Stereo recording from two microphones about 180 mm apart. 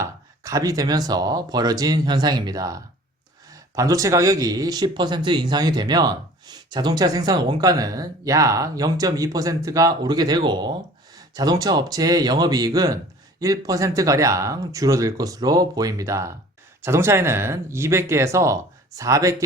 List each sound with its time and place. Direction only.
0.0 s speech: 20° right (ahead or behind)